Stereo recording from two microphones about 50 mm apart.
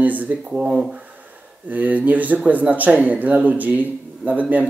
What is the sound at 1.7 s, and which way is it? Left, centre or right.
Speech, right.